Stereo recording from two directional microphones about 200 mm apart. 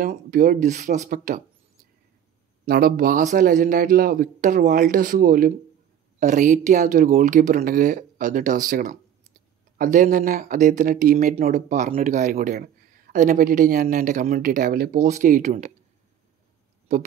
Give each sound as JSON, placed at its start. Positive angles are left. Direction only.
{"t": 0.0, "sound": "speech", "side_deg": -45}
{"t": 2.6, "sound": "a man's voice", "side_deg": -50}